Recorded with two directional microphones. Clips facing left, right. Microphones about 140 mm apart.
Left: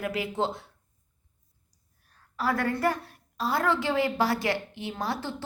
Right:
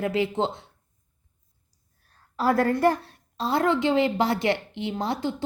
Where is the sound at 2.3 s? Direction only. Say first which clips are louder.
Right 6 dB; 30° right (ahead or behind).